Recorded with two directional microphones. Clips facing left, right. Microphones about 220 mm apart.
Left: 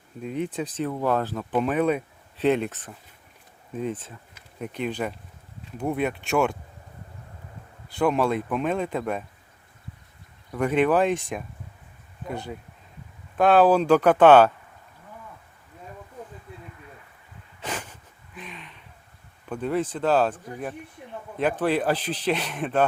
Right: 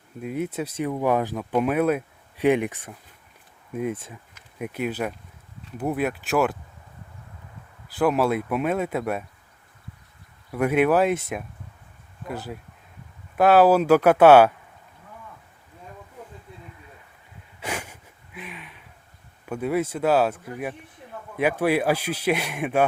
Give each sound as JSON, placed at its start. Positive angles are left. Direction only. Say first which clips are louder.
{"t": 0.2, "sound": "speech", "louder": "right 1 dB", "side_deg": -5}
{"t": 7.9, "sound": "speech", "louder": "right 1 dB", "side_deg": -5}
{"t": 10.5, "sound": "speech", "louder": "right 1 dB", "side_deg": -10}
{"t": 17.6, "sound": "a sound", "louder": "right 1 dB", "side_deg": -10}
{"t": 19.5, "sound": "speech", "louder": "right 1 dB", "side_deg": -10}